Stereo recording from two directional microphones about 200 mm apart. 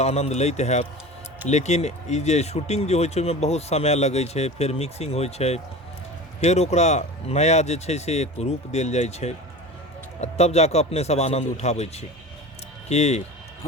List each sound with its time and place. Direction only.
0.0 s speech: 30° left (ahead or behind)